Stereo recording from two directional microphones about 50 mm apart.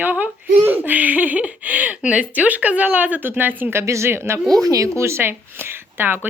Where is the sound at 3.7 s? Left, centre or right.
Right.